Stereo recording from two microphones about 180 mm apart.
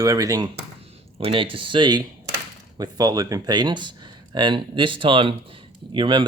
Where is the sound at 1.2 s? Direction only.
30° right (ahead or behind).